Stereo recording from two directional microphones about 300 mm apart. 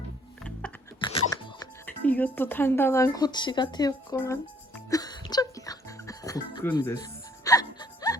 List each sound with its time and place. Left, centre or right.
0.9 s chewing: centre
2.0 s speech: centre
4.9 s music: centre